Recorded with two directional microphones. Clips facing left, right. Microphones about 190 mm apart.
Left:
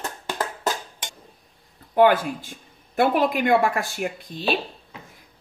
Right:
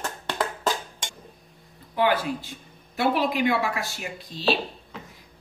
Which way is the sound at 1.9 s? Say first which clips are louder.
Left 6 dB; 50° left (ahead or behind).